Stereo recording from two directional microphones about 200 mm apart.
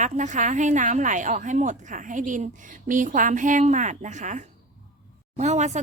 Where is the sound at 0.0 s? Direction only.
40° right (ahead or behind).